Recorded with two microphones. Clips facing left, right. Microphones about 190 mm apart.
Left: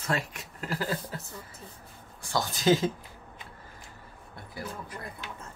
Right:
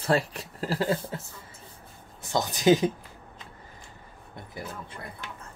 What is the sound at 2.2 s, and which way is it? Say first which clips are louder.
Speech: right 3 dB; 20° right (ahead or behind).